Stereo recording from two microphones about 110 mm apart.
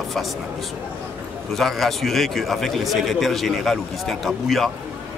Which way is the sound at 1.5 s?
Centre (ahead or behind).